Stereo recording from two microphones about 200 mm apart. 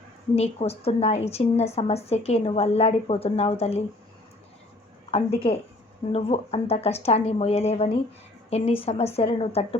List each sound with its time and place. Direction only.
0.3 s a woman's voice: 30° left (ahead or behind)
5.1 s a woman's voice: 30° left (ahead or behind)